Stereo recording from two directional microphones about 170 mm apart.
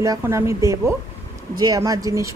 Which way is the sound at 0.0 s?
15° right (ahead or behind).